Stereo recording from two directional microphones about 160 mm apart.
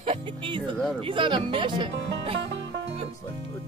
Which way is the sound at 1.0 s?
30° right (ahead or behind).